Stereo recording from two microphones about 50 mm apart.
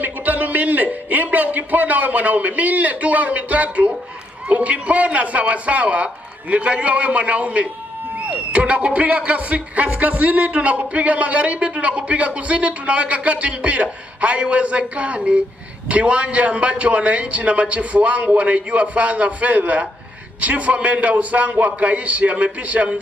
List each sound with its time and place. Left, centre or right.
0.0 s a man's voice: right